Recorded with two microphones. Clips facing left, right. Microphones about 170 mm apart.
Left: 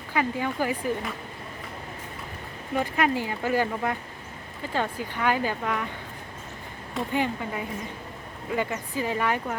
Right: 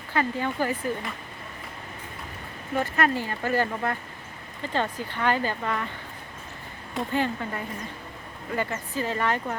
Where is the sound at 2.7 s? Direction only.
10° left (ahead or behind).